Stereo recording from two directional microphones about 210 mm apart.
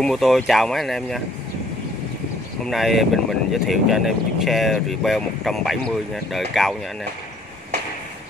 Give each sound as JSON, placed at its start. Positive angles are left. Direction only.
{"t": 0.0, "sound": "speech", "side_deg": 0}
{"t": 2.6, "sound": "speech", "side_deg": 0}